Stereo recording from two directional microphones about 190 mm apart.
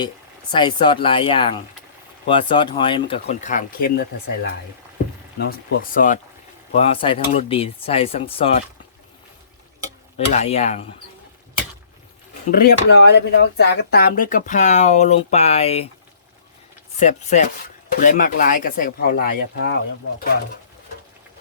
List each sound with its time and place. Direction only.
0.5 s speech: 25° left (ahead or behind); by 4.0 s 55° left (ahead or behind)
5.4 s speech: 50° left (ahead or behind)
6.7 s speech: 30° left (ahead or behind)
10.2 s speech: 35° left (ahead or behind)
12.5 s speech: 55° left (ahead or behind); by 15.9 s 30° left (ahead or behind)
17.0 s speech: 40° left (ahead or behind); by 19.7 s 55° left (ahead or behind)